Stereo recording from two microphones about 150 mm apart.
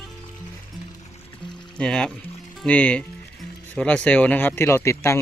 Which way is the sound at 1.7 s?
5° left (ahead or behind).